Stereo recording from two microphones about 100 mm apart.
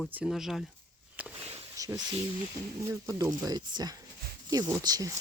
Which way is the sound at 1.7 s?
35° right (ahead or behind).